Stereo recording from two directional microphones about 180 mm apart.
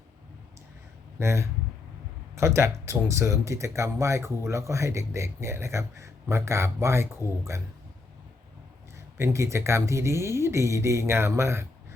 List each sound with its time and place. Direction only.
1.2 s speech: 15° right (ahead or behind)
9.1 s speech: 15° right (ahead or behind)